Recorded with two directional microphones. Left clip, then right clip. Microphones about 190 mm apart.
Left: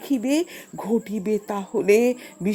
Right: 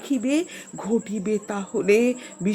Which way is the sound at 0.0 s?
25° left (ahead or behind).